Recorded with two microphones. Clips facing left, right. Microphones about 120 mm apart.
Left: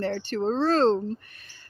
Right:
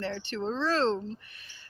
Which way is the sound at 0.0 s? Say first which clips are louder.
Left 6 dB; 45° left (ahead or behind).